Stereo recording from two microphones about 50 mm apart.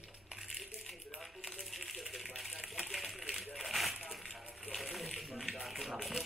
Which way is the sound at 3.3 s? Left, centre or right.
Centre.